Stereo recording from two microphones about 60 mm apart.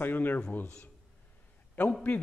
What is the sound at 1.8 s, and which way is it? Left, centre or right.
Speech, centre.